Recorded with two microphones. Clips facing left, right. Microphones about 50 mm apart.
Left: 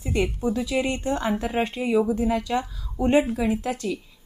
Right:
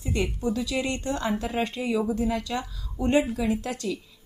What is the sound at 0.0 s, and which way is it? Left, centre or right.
A woman's voice, left.